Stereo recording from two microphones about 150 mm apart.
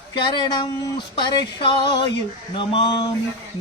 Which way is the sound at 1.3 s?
30° left (ahead or behind).